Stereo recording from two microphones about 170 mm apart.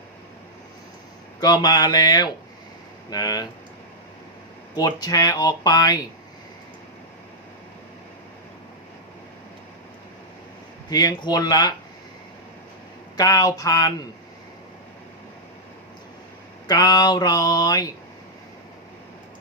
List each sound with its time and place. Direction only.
1.4 s speech: 25° left (ahead or behind)
4.7 s speech: 25° left (ahead or behind)
10.8 s speech: 25° left (ahead or behind)
13.1 s speech: 20° left (ahead or behind)
16.6 s speech: 25° left (ahead or behind)